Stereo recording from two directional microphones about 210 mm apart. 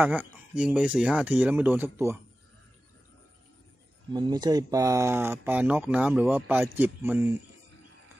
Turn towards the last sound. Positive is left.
turn(degrees=-10)  # may be behind; listen again after turning